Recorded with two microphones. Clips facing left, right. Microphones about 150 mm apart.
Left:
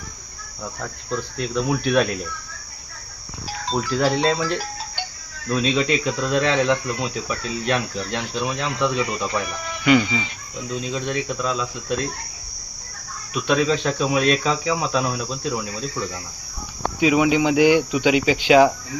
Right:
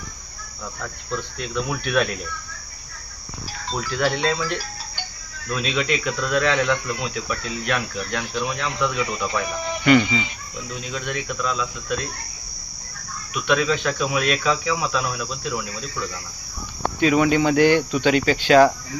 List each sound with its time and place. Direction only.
1.7 s speech: 30° left (ahead or behind)
3.8 s speech: 35° left (ahead or behind)
9.8 s speech: 5° left (ahead or behind)
10.9 s speech: 30° left (ahead or behind)
13.3 s speech: 30° left (ahead or behind)
17.0 s speech: 10° left (ahead or behind)